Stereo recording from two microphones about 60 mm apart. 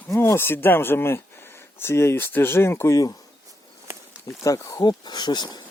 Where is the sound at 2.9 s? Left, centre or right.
Left.